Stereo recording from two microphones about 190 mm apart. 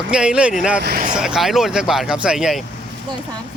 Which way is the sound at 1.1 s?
5° right (ahead or behind).